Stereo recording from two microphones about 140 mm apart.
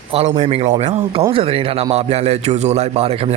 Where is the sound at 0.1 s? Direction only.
45° right (ahead or behind).